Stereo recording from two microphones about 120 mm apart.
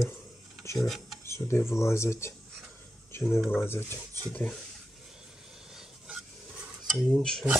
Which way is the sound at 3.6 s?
20° left (ahead or behind).